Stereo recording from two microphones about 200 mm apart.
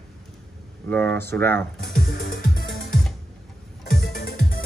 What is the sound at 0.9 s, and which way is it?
Speech, 10° left (ahead or behind).